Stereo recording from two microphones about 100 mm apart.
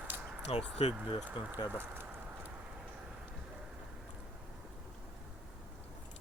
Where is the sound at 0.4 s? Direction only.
90° left.